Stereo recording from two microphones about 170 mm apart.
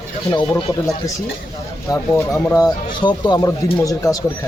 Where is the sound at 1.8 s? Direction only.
15° left (ahead or behind).